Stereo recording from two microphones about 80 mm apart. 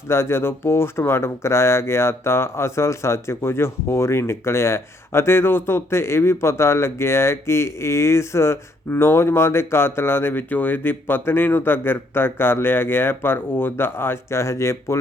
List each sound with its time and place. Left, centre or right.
0.1 s speech: left